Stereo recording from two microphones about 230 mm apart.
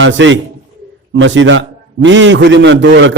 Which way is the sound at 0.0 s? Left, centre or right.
Right.